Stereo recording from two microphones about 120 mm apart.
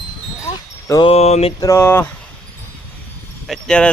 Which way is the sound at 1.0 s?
60° left (ahead or behind).